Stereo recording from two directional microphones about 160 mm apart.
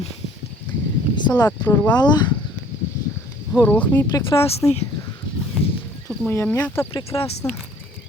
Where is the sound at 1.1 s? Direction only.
25° left (ahead or behind).